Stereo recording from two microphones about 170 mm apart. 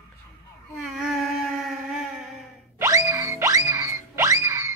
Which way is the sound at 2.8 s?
20° right (ahead or behind).